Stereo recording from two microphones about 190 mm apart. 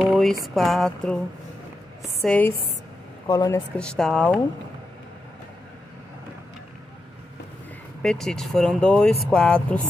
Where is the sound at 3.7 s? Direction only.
5° left (ahead or behind).